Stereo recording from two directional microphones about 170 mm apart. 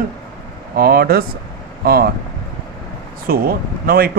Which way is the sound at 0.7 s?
65° right (ahead or behind).